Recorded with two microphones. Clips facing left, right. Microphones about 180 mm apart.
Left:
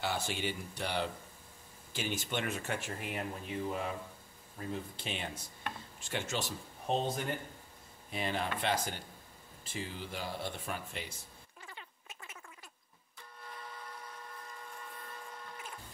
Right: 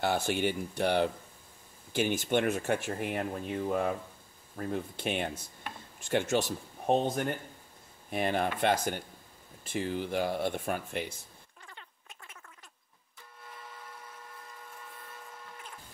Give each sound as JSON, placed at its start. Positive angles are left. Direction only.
{"t": 0.0, "sound": "speech", "side_deg": -55}
{"t": 11.6, "sound": "frog", "side_deg": 5}
{"t": 13.5, "sound": "a sound", "side_deg": -5}